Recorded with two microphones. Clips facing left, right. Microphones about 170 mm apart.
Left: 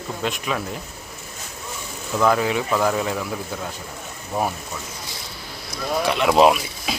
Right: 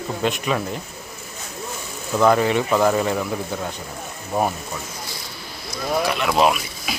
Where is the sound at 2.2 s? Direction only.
Centre (ahead or behind).